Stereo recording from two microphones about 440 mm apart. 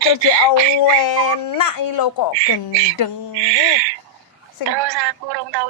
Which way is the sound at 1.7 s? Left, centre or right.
Left.